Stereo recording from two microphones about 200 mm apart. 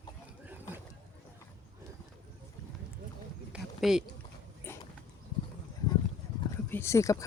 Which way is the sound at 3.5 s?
Centre (ahead or behind).